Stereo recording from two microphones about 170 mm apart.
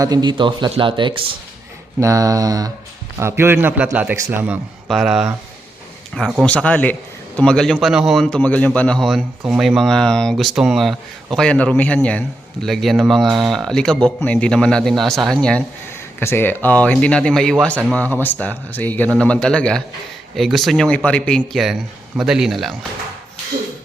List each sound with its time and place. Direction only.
0.0 s speech: 25° right (ahead or behind)
2.0 s a man's voice: 20° right (ahead or behind); by 22.7 s centre (ahead or behind)